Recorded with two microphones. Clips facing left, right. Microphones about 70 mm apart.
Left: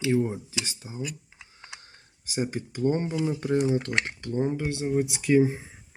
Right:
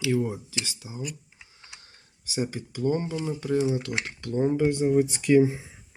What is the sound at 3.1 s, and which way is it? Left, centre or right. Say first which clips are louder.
Speech: left 3 dB; centre.